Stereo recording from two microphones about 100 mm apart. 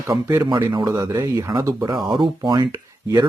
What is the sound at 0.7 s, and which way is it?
Speech, 45° right (ahead or behind).